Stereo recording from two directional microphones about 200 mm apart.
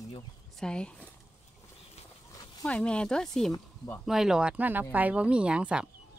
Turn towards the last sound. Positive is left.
turn(degrees=-5)  # may be behind; listen again after turning